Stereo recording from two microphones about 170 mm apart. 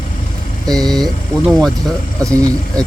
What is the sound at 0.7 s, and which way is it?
Speech, centre (ahead or behind).